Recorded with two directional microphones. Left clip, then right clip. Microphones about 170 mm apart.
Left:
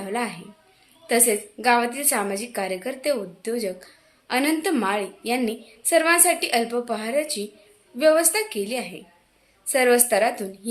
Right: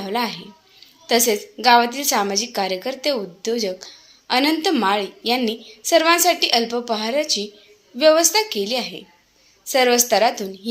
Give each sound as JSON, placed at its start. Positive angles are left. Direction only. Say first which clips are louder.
{"t": 0.0, "sound": "a woman's voice", "louder": "right 4 dB", "side_deg": -15}